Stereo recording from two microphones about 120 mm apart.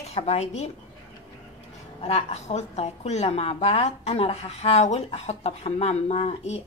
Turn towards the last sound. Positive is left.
turn(degrees=60)  # may be behind; listen again after turning